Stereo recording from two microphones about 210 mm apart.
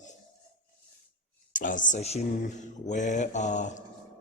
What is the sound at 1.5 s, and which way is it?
Speech, 40° left (ahead or behind).